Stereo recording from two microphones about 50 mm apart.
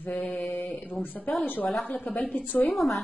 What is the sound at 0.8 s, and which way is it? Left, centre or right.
A woman's voice, left.